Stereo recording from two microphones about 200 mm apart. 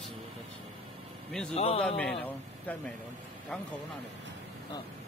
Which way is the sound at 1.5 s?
30° left (ahead or behind).